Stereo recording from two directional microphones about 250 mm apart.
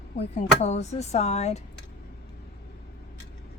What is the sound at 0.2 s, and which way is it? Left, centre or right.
Speech, left.